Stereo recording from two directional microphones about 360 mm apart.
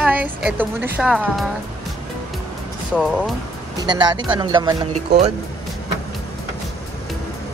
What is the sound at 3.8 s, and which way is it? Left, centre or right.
Music, centre.